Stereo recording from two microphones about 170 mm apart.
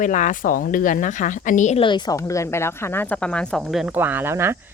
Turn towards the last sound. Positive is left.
turn(degrees=-15)  # may be behind; listen again after turning